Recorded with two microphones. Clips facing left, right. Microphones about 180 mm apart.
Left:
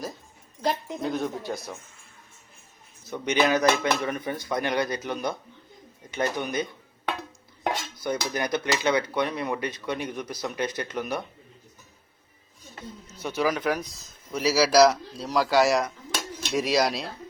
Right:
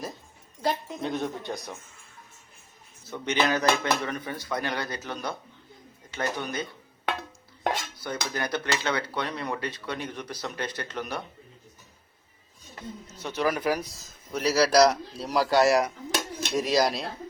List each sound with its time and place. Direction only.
1.0 s a man's voice: centre (ahead or behind)
3.1 s dishes: 15° left (ahead or behind)
13.1 s dishes: 10° left (ahead or behind)
13.4 s a man's voice: 5° right (ahead or behind)